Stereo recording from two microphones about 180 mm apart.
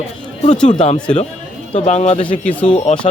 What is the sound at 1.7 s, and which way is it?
Speech, 40° left (ahead or behind).